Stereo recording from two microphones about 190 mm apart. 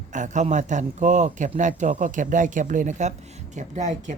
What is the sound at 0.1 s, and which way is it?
A man's voice, 40° right (ahead or behind).